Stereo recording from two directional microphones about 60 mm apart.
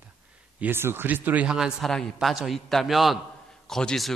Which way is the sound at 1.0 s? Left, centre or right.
Right.